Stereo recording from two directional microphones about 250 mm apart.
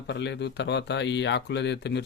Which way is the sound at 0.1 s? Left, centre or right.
Left.